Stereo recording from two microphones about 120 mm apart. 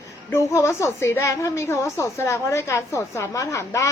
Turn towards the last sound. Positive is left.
turn(degrees=25)  # may be behind; listen again after turning